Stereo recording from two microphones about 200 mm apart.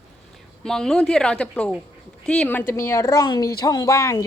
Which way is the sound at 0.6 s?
5° left (ahead or behind).